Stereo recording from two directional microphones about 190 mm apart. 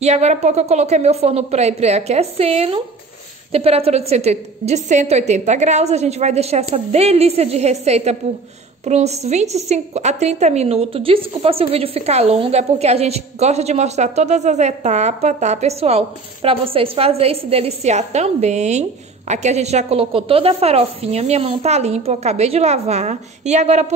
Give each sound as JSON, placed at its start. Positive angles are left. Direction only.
{"t": 0.0, "sound": "a woman's voice", "side_deg": -35}